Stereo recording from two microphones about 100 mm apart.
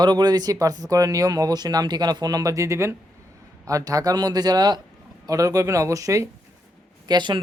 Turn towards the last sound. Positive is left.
turn(degrees=-50)  # may be behind; listen again after turning